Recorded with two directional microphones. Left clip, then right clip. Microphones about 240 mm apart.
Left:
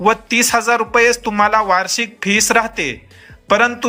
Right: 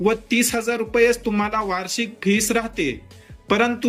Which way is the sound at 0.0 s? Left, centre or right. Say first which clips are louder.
Left 6 dB; centre.